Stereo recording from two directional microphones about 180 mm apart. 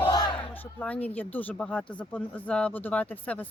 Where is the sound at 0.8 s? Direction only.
5° left (ahead or behind).